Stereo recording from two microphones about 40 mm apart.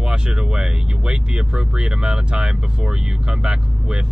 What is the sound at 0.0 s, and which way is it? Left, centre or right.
Speech, right.